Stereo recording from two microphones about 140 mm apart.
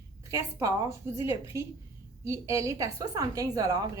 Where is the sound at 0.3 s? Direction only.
25° right (ahead or behind).